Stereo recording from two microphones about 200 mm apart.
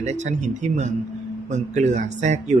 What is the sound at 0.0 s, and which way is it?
Speech, 35° right (ahead or behind).